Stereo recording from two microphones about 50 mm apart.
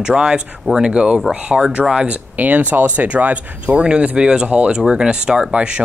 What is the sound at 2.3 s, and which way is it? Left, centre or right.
Speech, right.